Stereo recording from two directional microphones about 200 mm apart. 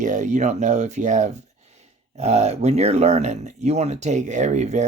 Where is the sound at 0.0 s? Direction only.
40° right (ahead or behind).